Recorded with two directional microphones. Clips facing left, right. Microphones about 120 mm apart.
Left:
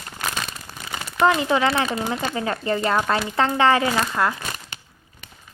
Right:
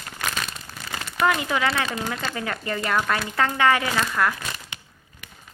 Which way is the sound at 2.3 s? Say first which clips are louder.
Left 5 dB; 25° left (ahead or behind).